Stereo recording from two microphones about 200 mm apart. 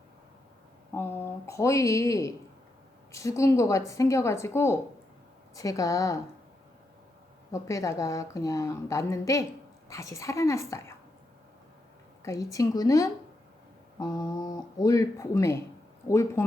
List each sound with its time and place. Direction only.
0.9 s a woman's voice: 10° left (ahead or behind)
7.5 s a woman's voice: 15° left (ahead or behind)
12.2 s a woman's voice: 15° left (ahead or behind)